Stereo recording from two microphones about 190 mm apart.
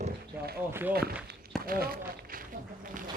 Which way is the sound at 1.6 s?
50° right (ahead or behind).